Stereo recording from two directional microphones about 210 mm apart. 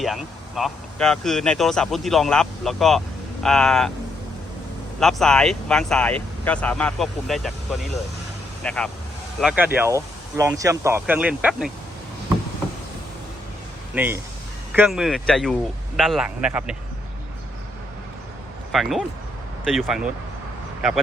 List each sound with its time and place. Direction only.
0.0 s speech: centre (ahead or behind)
4.9 s speech: 5° left (ahead or behind)
13.9 s speech: 10° right (ahead or behind)
18.7 s speech: centre (ahead or behind)